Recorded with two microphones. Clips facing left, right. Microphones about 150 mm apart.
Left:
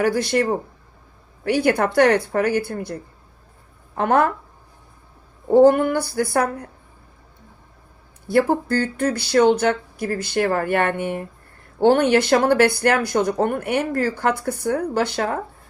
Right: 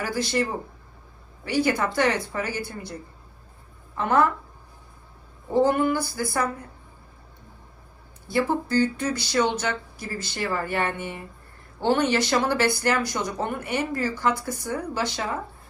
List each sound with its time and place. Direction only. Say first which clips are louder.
0.0 s speech: left 7 dB; 60° left (ahead or behind)
1.5 s speech: left 5 dB; 60° left (ahead or behind)
5.5 s speech: left 7 dB; 55° left (ahead or behind)
8.3 s speech: left 5 dB; 55° left (ahead or behind)